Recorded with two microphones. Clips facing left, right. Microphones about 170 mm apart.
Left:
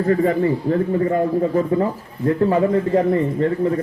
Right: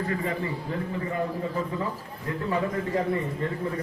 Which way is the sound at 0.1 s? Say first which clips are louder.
Left 12 dB; 45° left (ahead or behind).